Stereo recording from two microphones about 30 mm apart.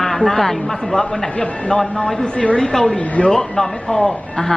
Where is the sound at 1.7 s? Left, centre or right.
Left.